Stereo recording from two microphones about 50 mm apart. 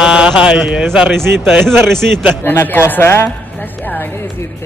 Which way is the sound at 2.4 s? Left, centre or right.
Left.